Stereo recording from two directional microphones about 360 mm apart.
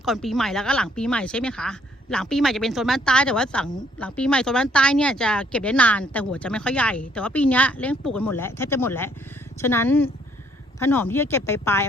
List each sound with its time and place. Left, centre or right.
0.0 s speech: centre